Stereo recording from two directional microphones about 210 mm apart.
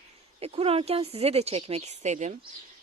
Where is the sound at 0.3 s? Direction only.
30° right (ahead or behind).